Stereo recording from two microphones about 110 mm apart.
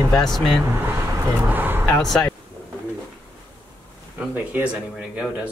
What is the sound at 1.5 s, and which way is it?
Speech, 20° right (ahead or behind).